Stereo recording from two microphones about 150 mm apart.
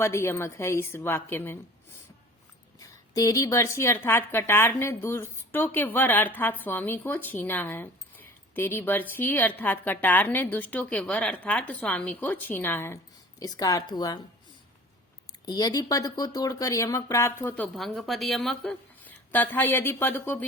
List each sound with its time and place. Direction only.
0.0 s a woman's voice: 15° left (ahead or behind)
2.7 s a woman's voice: 20° left (ahead or behind)
15.3 s a woman's voice: 25° left (ahead or behind)